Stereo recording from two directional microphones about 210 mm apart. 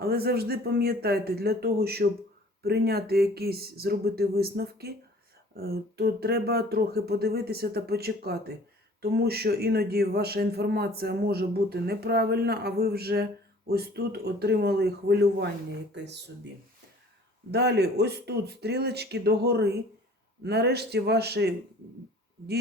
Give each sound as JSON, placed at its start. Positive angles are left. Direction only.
{"t": 0.1, "sound": "a man's voice", "side_deg": -50}
{"t": 17.5, "sound": "a man's voice", "side_deg": -50}